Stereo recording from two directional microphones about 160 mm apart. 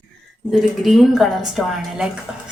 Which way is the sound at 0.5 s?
Centre (ahead or behind).